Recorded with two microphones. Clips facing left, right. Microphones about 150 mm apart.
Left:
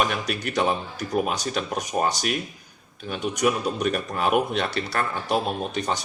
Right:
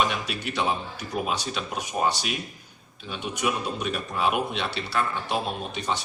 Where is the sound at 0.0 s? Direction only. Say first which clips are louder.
Left 2 dB; 45° left (ahead or behind).